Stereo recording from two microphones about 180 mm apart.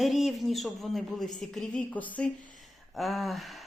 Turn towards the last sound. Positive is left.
turn(degrees=0)  # may be behind; listen again after turning